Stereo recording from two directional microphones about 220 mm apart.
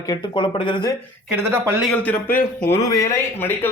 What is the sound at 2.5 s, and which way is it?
Speech, 10° left (ahead or behind).